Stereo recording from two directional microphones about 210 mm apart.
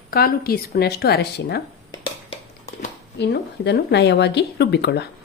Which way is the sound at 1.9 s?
30° left (ahead or behind).